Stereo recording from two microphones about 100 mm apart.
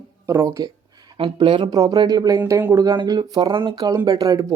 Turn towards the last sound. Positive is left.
turn(degrees=-40)  # may be behind; listen again after turning